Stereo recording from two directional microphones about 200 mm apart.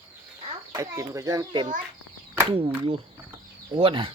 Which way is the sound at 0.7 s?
15° right (ahead or behind).